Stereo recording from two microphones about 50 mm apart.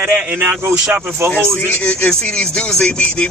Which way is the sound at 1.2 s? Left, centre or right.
Right.